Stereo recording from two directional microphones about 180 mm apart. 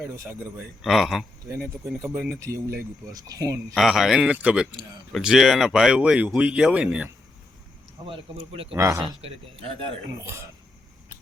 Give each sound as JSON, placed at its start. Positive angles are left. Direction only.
{"t": 0.2, "sound": "a man's voice", "side_deg": -10}
{"t": 0.8, "sound": "speech", "side_deg": 0}
{"t": 2.4, "sound": "a man's voice", "side_deg": -15}
{"t": 3.8, "sound": "speech", "side_deg": 0}
{"t": 8.7, "sound": "a man's voice", "side_deg": -15}